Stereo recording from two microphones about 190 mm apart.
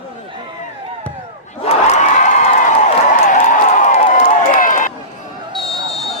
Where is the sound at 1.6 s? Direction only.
35° left (ahead or behind).